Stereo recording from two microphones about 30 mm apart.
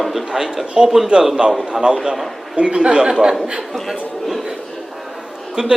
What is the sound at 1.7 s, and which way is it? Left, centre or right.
Speech, right.